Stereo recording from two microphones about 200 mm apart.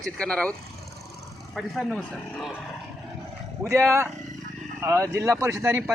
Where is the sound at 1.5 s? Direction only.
Centre (ahead or behind).